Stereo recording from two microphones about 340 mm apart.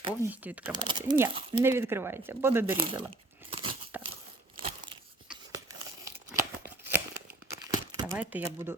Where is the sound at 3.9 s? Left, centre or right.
Centre.